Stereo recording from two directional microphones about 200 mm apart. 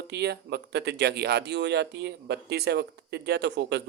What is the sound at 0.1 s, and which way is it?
Speech, 55° right (ahead or behind).